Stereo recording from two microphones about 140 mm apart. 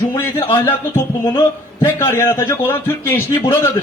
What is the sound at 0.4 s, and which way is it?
A man's voice, 30° left (ahead or behind).